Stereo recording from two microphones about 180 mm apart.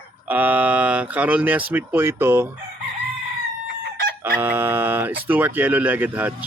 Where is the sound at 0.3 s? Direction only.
10° right (ahead or behind).